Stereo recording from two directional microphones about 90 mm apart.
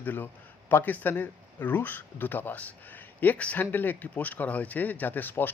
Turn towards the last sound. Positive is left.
turn(degrees=20)  # may be behind; listen again after turning